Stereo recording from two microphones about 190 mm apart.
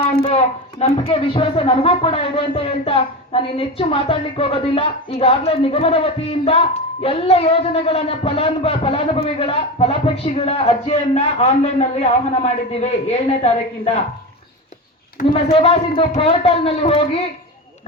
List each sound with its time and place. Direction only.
0.0 s speech: 30° left (ahead or behind)
15.4 s speech: 30° left (ahead or behind)